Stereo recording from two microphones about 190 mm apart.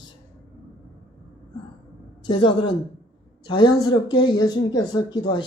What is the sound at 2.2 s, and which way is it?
Speech, 20° left (ahead or behind).